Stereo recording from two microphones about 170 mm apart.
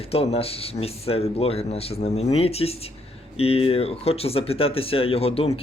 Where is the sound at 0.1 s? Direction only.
35° left (ahead or behind).